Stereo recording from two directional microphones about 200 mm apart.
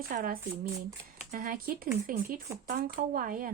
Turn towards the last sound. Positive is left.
turn(degrees=-45)  # may be behind; listen again after turning